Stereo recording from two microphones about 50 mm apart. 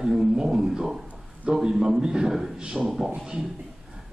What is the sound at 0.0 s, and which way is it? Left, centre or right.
A man's voice, centre.